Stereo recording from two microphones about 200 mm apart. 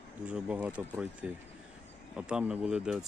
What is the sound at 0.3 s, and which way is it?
Speech, 5° right (ahead or behind).